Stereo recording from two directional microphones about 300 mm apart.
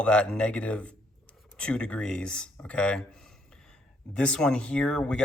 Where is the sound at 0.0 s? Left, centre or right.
Centre.